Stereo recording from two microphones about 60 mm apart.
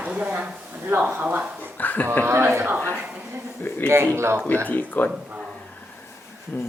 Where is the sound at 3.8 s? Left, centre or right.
Right.